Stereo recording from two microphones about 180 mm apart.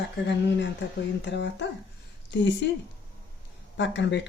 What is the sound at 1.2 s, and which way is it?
Speech, 80° left.